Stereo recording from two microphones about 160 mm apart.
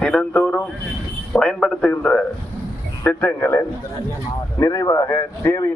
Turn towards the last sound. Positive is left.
turn(degrees=15)  # may be behind; listen again after turning